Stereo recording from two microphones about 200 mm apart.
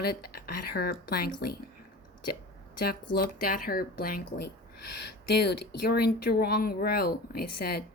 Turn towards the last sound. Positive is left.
turn(degrees=50)  # may be behind; listen again after turning